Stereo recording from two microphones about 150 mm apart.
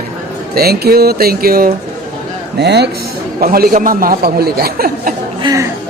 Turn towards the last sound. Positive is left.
turn(degrees=-25)  # may be behind; listen again after turning